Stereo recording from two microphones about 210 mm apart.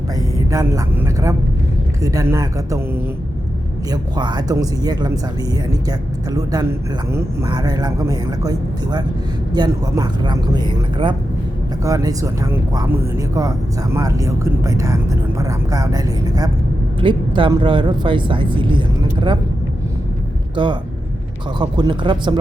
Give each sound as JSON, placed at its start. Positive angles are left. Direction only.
{"t": 0.3, "sound": "speech", "side_deg": -15}
{"t": 20.6, "sound": "speech", "side_deg": -25}